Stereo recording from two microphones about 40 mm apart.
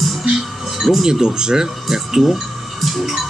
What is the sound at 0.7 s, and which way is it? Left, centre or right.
Speech, centre.